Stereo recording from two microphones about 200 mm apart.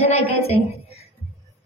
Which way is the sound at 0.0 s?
30° left (ahead or behind).